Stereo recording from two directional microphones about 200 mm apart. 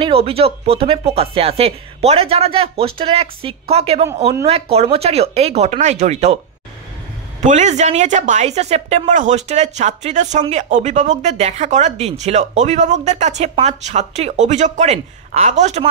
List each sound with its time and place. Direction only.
0.0 s speech: 30° right (ahead or behind)
7.4 s speech: 35° right (ahead or behind)